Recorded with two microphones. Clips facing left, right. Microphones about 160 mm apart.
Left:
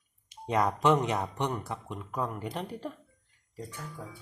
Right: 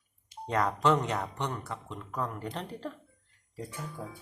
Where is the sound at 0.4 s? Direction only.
10° left (ahead or behind).